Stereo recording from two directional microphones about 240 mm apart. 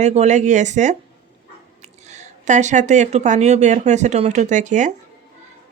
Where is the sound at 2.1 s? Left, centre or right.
Right.